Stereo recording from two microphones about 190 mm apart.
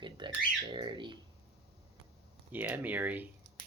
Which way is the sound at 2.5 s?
10° right (ahead or behind).